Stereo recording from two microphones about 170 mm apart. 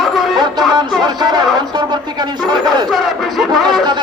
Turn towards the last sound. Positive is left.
turn(degrees=0)  # may be behind; listen again after turning